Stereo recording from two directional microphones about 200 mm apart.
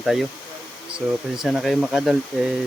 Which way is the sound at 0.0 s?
Centre (ahead or behind).